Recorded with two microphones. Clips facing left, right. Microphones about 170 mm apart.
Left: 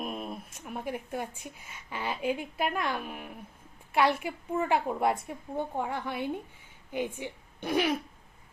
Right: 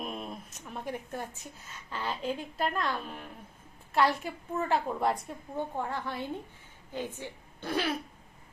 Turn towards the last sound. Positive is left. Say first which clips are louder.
# left 4 dB
turn(degrees=15)  # may be behind; listen again after turning